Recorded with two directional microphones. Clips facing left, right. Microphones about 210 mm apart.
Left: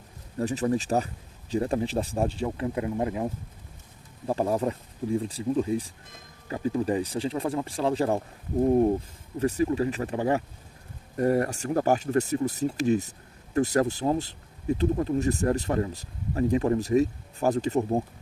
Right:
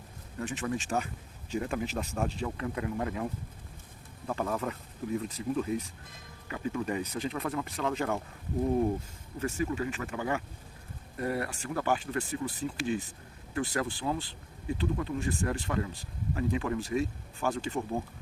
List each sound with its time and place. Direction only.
0.3 s speech: 35° left (ahead or behind)
4.3 s speech: 30° left (ahead or behind)
9.4 s speech: 35° left (ahead or behind)